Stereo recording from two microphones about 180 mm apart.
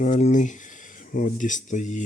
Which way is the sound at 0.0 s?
45° left (ahead or behind).